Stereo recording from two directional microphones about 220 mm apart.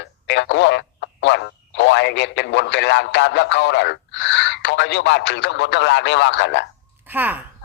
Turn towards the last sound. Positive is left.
turn(degrees=-10)  # may be behind; listen again after turning